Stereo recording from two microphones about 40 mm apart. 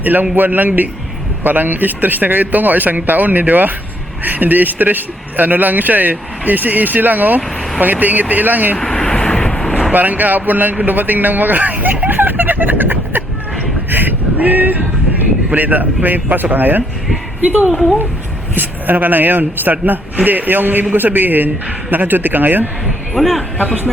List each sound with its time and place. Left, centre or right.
0.0 s a man's voice: right
8.8 s vehicle: centre
9.9 s a man's voice: right
12.0 s a sound: right
13.9 s male singing: right
15.5 s a man's voice: right
17.7 s a woman's voice: centre
18.5 s a man's voice: right
23.1 s a woman's voice: centre